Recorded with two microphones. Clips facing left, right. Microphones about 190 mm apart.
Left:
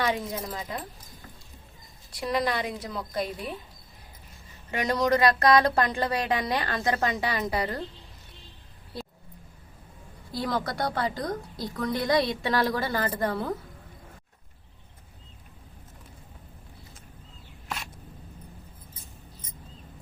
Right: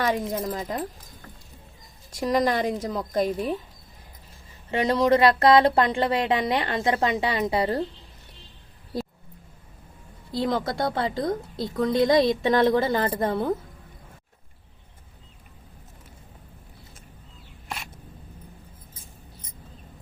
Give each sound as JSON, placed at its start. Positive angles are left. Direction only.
{"t": 0.0, "sound": "a woman's voice", "side_deg": -45}
{"t": 2.1, "sound": "a woman's voice", "side_deg": -45}
{"t": 4.7, "sound": "a woman's voice", "side_deg": -30}
{"t": 8.9, "sound": "roaring cats", "side_deg": -40}
{"t": 10.3, "sound": "a woman's voice", "side_deg": -25}